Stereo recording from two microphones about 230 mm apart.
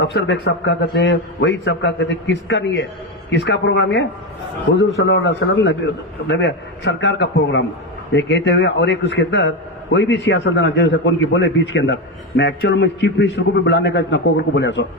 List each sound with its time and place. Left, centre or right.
0.0 s a man's voice: left